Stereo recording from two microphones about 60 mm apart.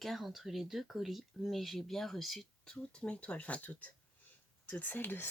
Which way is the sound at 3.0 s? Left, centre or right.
Centre.